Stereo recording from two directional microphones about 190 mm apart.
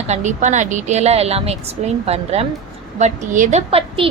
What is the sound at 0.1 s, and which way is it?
A woman's voice, 40° right (ahead or behind).